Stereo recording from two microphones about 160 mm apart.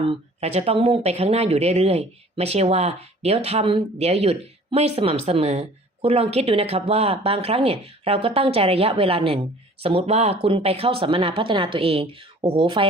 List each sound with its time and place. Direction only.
0.0 s speech: 35° right (ahead or behind)